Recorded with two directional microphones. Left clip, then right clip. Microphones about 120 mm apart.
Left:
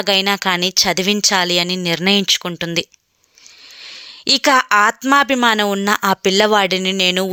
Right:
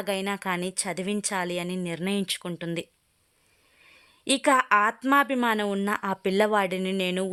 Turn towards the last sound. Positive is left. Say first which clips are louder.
# left 12 dB
turn(degrees=30)  # may be behind; listen again after turning